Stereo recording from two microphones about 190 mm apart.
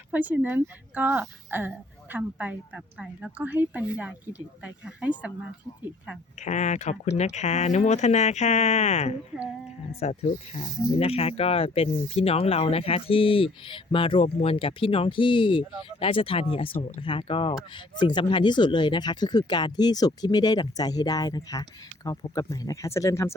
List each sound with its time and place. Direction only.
0.1 s a woman's voice: 10° right (ahead or behind)
6.4 s speech: 40° left (ahead or behind); by 23.3 s 15° left (ahead or behind)